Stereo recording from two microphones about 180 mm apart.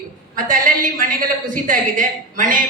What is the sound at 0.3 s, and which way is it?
A woman's voice, 50° right (ahead or behind).